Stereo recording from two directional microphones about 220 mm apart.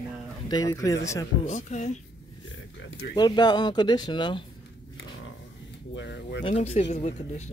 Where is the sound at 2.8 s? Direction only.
60° left (ahead or behind).